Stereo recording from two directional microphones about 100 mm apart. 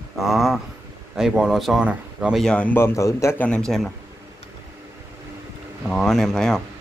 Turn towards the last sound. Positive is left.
turn(degrees=5)  # may be behind; listen again after turning